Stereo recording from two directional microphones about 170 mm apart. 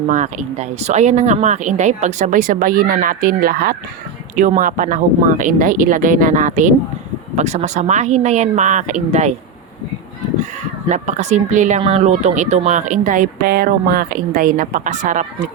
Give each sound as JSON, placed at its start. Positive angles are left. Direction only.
{"t": 0.1, "sound": "speech", "side_deg": -45}
{"t": 4.4, "sound": "speech", "side_deg": -50}
{"t": 10.8, "sound": "speech", "side_deg": -45}